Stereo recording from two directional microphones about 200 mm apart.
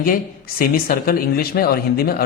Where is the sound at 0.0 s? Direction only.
50° left (ahead or behind).